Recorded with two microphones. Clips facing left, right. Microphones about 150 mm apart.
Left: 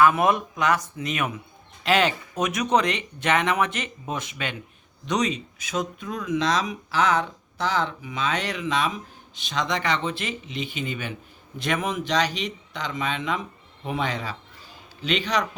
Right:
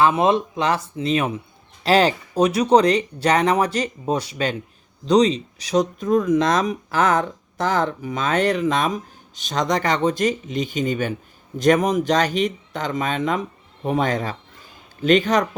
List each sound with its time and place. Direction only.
0.0 s speech: 25° right (ahead or behind); by 15.4 s 45° right (ahead or behind)